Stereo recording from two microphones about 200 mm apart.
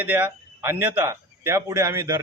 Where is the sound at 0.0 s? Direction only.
10° right (ahead or behind).